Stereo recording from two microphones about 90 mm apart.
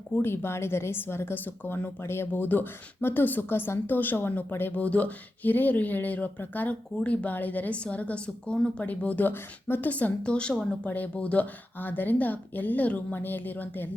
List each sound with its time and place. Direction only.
0.1 s a woman's voice: 25° left (ahead or behind)